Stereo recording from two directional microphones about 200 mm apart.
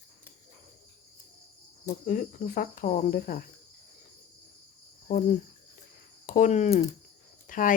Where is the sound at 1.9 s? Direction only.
40° left (ahead or behind).